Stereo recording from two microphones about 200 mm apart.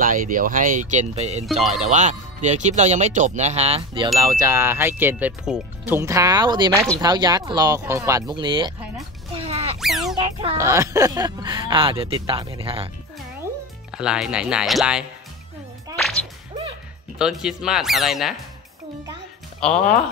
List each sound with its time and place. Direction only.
0.0 s speech: 45° right (ahead or behind)
4.2 s speech: 15° right (ahead or behind)
9.4 s music: 30° right (ahead or behind)
9.8 s music: centre (ahead or behind)
10.1 s music: 25° right (ahead or behind)
10.6 s speech: 15° right (ahead or behind)
13.9 s speech: 5° right (ahead or behind)
17.2 s speech: 5° right (ahead or behind)
19.6 s speech: 5° left (ahead or behind)